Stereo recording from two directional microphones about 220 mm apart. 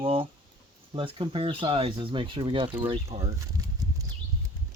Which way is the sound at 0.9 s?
25° right (ahead or behind).